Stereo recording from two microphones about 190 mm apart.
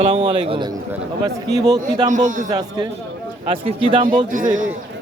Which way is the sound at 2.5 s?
20° right (ahead or behind).